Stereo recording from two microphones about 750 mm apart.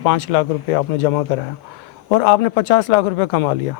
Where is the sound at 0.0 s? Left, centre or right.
Left.